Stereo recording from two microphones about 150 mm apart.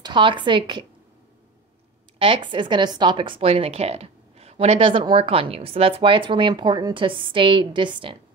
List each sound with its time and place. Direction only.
0.0 s speech: 30° right (ahead or behind)
2.1 s speech: 35° right (ahead or behind)